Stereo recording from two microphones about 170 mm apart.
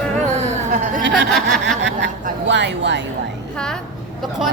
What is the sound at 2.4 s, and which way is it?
Speech, 90° right.